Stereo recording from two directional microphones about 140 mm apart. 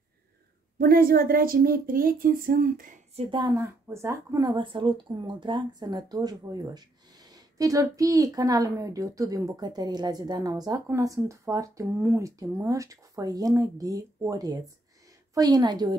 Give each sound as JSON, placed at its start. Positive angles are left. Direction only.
{"t": 0.7, "sound": "speech", "side_deg": -90}
{"t": 3.2, "sound": "a woman's voice", "side_deg": -35}
{"t": 3.5, "sound": "speech", "side_deg": -20}